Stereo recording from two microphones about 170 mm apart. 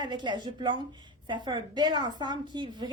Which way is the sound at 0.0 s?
25° right (ahead or behind).